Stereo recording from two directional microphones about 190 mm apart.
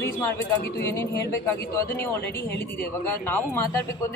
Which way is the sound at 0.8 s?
15° left (ahead or behind).